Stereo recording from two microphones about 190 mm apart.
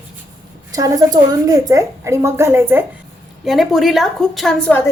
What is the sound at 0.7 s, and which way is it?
A woman's voice, 20° right (ahead or behind).